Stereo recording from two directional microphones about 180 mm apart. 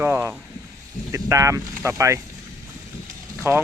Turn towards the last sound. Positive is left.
turn(degrees=-15)  # may be behind; listen again after turning